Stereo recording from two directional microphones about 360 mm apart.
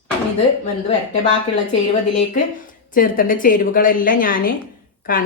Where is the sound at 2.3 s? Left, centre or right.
Left.